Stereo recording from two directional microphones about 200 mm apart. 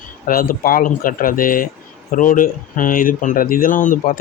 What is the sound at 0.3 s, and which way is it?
Speech, 45° left (ahead or behind).